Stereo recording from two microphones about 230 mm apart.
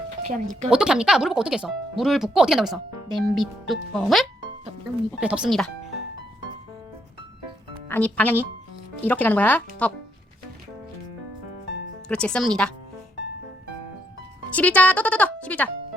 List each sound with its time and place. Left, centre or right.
0.3 s speech: right
0.7 s speech: centre
7.9 s speech: centre
12.0 s speech: centre
14.5 s speech: centre